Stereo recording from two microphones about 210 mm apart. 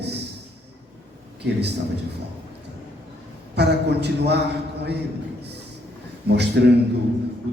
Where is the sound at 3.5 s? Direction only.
50° right (ahead or behind).